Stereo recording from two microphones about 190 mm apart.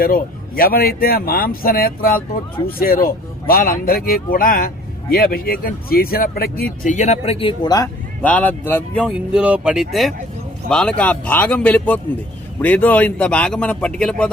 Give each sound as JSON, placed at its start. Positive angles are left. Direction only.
{"t": 0.0, "sound": "speech", "side_deg": 50}
{"t": 8.2, "sound": "speech", "side_deg": 10}
{"t": 9.0, "sound": "speech", "side_deg": -5}